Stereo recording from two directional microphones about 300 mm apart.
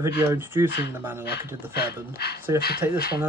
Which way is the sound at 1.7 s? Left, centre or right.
Left.